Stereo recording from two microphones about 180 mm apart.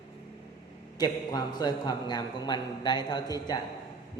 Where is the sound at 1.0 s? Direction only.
20° left (ahead or behind).